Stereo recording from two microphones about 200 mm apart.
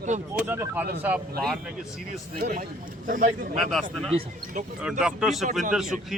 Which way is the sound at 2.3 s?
45° right (ahead or behind).